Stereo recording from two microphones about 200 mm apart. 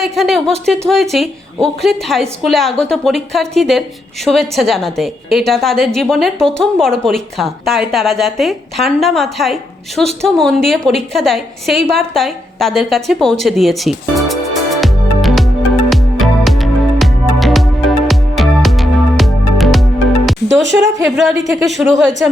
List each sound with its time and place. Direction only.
0.0 s a woman's voice: centre (ahead or behind)
15.9 s music: centre (ahead or behind)
20.6 s a woman's voice: 65° right (ahead or behind)
21.6 s a woman's voice: centre (ahead or behind)